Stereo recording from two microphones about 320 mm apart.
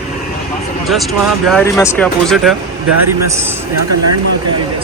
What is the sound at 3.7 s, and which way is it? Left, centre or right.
Speech, right.